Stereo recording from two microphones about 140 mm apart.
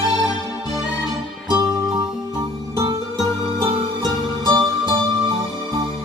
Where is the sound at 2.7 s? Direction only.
30° right (ahead or behind).